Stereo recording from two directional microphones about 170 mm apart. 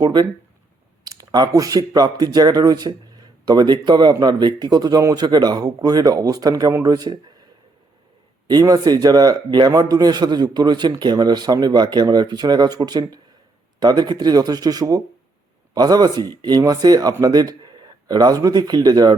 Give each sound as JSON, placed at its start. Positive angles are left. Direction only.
{"t": 0.0, "sound": "speech", "side_deg": -25}
{"t": 8.4, "sound": "speech", "side_deg": -20}